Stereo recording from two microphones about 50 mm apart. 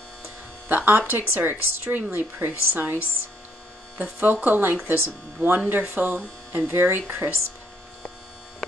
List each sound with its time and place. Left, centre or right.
0.7 s a woman's voice: right